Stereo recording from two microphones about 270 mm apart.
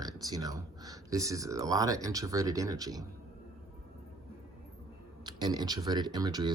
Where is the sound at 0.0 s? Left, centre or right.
Centre.